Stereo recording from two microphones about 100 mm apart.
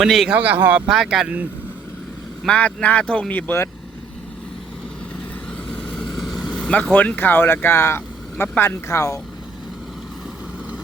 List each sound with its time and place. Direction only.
0.0 s a man's voice: centre (ahead or behind)
0.3 s speech: 15° right (ahead or behind)
2.5 s speech: 15° left (ahead or behind)
5.7 s vehicle: 5° left (ahead or behind)
6.9 s speech: 15° left (ahead or behind)
9.0 s speech: 35° left (ahead or behind)